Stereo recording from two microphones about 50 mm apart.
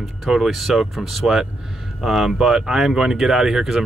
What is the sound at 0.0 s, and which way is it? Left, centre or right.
Speech, centre.